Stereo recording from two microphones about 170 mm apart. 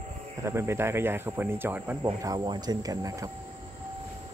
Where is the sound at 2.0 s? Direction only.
20° right (ahead or behind).